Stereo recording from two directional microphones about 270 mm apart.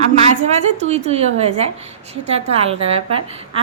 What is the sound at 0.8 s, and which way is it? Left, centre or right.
A woman's voice, right.